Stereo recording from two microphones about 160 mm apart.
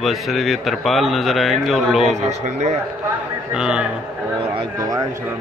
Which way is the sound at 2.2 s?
45° right (ahead or behind).